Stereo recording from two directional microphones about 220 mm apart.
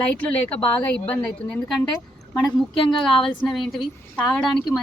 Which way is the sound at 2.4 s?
20° left (ahead or behind).